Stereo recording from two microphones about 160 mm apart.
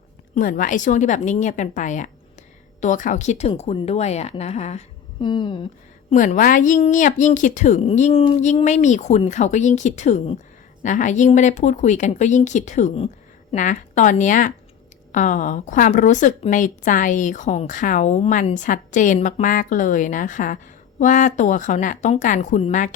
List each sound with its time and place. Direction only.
0.3 s a woman's voice: 55° left (ahead or behind)
5.2 s a sound: 30° left (ahead or behind)
6.1 s a woman's voice: 50° left (ahead or behind)